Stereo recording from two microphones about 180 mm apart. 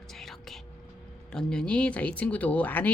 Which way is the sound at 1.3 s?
5° left (ahead or behind).